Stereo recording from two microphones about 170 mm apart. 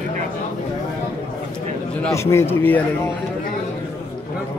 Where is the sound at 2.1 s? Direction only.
15° left (ahead or behind).